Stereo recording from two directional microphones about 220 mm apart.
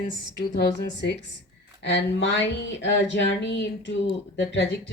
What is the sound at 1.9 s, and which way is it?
Speech, 55° left (ahead or behind).